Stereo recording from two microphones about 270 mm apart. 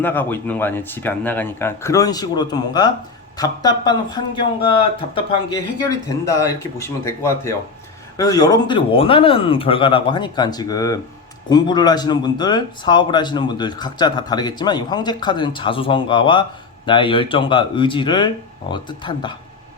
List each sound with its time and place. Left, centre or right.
0.0 s speech: centre